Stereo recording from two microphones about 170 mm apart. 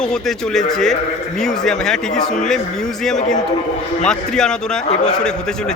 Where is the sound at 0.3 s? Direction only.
Centre (ahead or behind).